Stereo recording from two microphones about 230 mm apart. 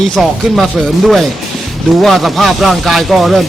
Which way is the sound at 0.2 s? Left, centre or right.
Centre.